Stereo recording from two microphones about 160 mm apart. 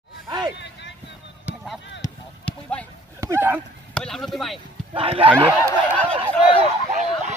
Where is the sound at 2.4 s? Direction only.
10° left (ahead or behind).